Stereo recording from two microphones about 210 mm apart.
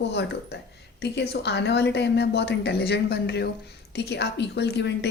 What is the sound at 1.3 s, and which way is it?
A woman's voice, 55° left (ahead or behind).